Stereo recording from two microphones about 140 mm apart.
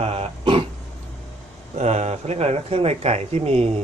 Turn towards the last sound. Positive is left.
turn(degrees=-50)  # may be behind; listen again after turning